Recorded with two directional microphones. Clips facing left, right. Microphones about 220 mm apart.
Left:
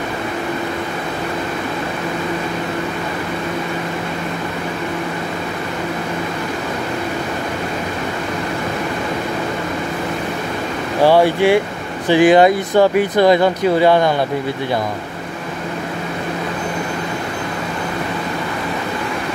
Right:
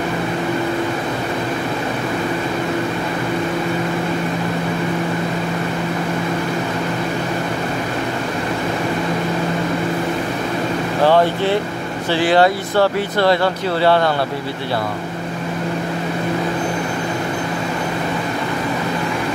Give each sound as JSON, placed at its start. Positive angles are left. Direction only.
{"t": 11.1, "sound": "speech", "side_deg": 10}